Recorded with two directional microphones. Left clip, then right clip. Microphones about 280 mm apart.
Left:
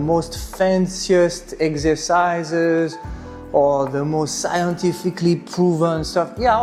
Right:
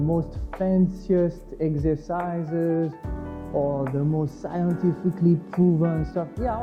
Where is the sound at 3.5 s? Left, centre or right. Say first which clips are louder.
Left 9 dB; left.